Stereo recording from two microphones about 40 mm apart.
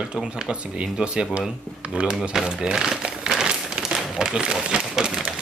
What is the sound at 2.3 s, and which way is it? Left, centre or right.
Crumpling, centre.